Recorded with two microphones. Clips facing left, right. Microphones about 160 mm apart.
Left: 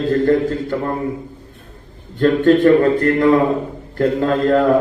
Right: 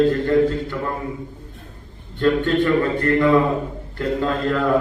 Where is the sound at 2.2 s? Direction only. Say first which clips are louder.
Left 6 dB; 45° left (ahead or behind).